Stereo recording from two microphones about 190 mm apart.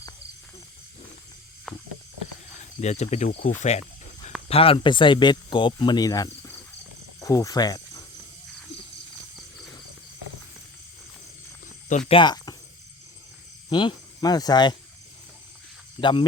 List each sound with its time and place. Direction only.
1.7 s snake: centre (ahead or behind)
2.8 s speech: 35° left (ahead or behind); by 6.6 s 20° left (ahead or behind)
7.2 s cricket: 20° left (ahead or behind)
11.9 s speech: 35° left (ahead or behind)
13.7 s speech: 25° left (ahead or behind)
16.0 s speech: 25° left (ahead or behind)